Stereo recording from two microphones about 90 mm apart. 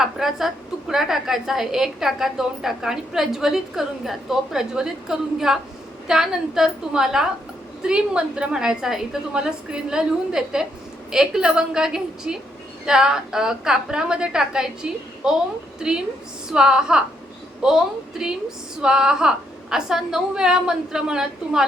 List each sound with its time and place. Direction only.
0.0 s a woman's voice: 5° right (ahead or behind)